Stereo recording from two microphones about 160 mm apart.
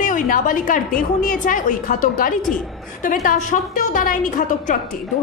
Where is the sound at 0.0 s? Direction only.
55° left (ahead or behind).